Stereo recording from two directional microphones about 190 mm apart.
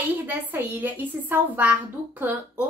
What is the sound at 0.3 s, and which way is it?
A woman's voice, 10° right (ahead or behind).